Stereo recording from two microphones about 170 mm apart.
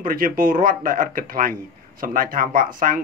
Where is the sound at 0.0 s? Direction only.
55° right (ahead or behind).